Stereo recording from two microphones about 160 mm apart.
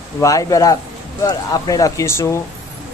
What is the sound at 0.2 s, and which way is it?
Speech, 20° left (ahead or behind).